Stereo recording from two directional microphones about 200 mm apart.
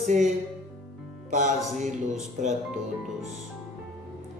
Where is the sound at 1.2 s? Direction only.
40° right (ahead or behind).